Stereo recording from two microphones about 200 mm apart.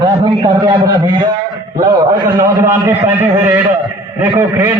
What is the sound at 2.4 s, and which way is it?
A man's voice, 15° right (ahead or behind).